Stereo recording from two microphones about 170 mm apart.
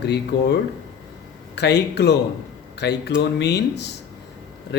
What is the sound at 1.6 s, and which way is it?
Speech, 80° left.